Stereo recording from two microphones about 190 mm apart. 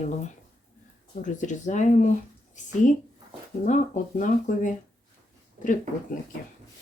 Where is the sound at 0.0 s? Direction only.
40° left (ahead or behind).